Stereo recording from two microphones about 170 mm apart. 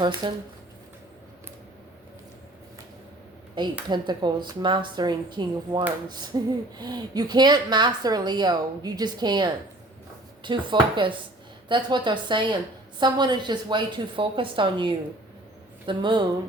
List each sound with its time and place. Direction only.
0.0 s speech: 25° right (ahead or behind)
3.8 s speech: 25° right (ahead or behind)